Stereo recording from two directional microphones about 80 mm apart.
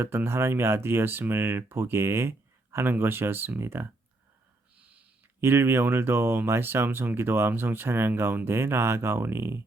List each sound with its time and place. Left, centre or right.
0.0 s speech: right
5.4 s speech: right